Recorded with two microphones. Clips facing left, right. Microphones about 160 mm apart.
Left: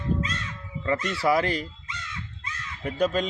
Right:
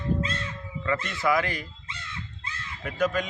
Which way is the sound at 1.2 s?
35° left (ahead or behind).